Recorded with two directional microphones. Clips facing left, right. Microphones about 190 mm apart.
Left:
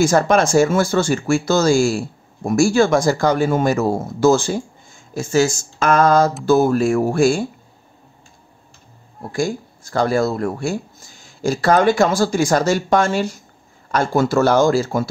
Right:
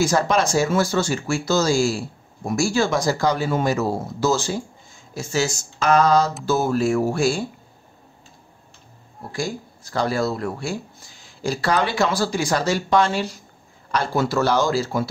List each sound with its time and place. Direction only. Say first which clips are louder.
0.0 s speech: left 5 dB; 50° left (ahead or behind)
9.3 s speech: left 6 dB; 50° left (ahead or behind)